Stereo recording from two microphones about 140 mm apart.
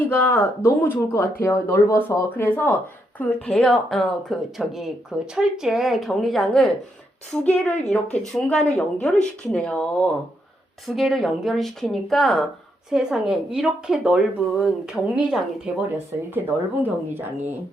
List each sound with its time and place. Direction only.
0.0 s speech: 15° left (ahead or behind); by 15.7 s 5° right (ahead or behind)
16.8 s speech: 15° right (ahead or behind)